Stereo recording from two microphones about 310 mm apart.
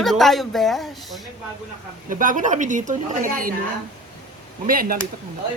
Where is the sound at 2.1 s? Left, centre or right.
Right.